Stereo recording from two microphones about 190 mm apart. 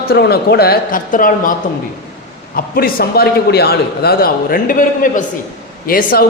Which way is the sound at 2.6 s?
50° left (ahead or behind).